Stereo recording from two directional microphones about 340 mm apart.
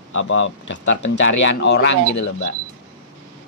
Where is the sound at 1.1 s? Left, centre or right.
Left.